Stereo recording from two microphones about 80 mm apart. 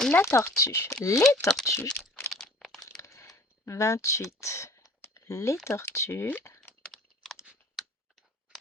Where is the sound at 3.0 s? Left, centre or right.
Left.